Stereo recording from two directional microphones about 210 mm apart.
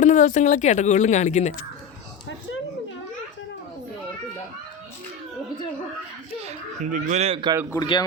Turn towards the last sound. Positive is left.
turn(degrees=20)  # may be behind; listen again after turning